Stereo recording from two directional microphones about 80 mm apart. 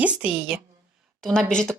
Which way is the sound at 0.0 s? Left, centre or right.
Centre.